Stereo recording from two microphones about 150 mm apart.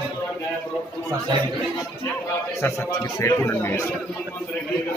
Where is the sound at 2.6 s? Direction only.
20° left (ahead or behind).